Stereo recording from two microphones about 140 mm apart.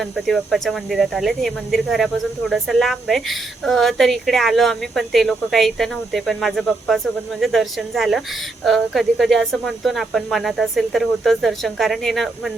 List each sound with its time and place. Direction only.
0.0 s speech: centre (ahead or behind)